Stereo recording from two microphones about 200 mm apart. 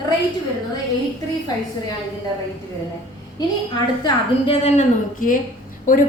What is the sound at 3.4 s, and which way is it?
A woman's voice, 20° left (ahead or behind).